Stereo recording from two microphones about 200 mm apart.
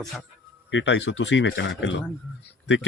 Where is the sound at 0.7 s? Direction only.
65° left (ahead or behind).